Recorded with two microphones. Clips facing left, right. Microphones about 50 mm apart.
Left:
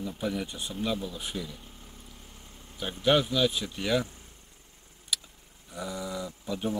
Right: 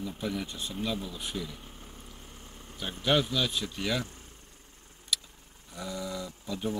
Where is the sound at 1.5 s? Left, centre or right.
Centre.